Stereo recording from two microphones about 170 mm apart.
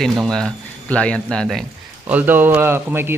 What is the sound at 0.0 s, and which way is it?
Speech, centre (ahead or behind).